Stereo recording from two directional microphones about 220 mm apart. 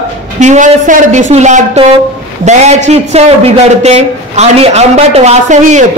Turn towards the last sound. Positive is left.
turn(degrees=-35)  # may be behind; listen again after turning